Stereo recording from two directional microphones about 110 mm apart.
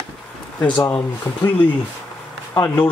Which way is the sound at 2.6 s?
20° left (ahead or behind).